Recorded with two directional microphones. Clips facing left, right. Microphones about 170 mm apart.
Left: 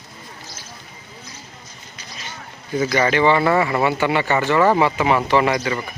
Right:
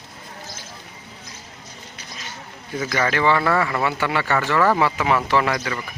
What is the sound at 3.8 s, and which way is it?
A man's voice, 5° left (ahead or behind).